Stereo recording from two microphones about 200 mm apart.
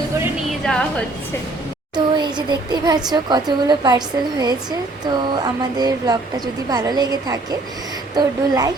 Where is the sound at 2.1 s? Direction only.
20° right (ahead or behind).